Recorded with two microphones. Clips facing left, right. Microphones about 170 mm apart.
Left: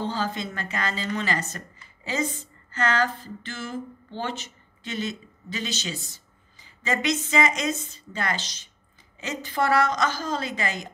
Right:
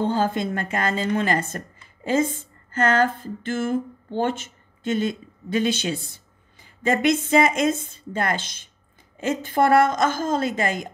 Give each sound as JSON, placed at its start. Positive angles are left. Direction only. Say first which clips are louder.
{"t": 0.0, "sound": "a woman's voice", "louder": "right 6 dB", "side_deg": -50}